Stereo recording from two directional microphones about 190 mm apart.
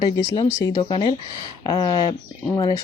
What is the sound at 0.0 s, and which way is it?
Speech, 20° left (ahead or behind).